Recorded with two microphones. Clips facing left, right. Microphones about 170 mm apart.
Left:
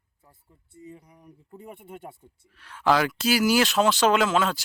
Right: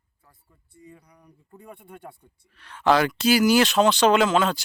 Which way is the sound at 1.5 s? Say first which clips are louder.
Left 2 dB; 25° left (ahead or behind).